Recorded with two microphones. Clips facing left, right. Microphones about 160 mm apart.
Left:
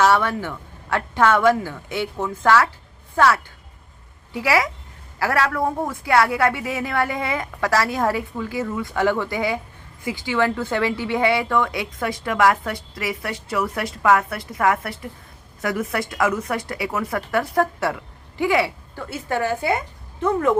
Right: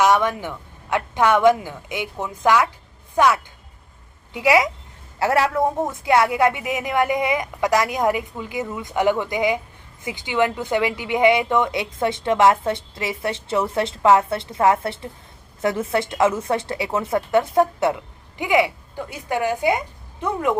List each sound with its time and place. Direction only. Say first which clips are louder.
0.0 s a woman's voice: even; 15° right (ahead or behind)